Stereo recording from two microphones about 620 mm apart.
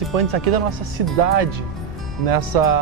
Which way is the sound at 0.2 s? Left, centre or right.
Right.